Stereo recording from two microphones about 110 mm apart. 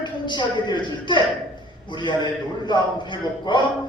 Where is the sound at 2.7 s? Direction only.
45° left (ahead or behind).